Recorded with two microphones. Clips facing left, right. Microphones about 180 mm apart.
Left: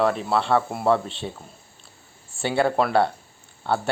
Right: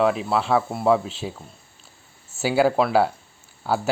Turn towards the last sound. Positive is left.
turn(degrees=-5)  # may be behind; listen again after turning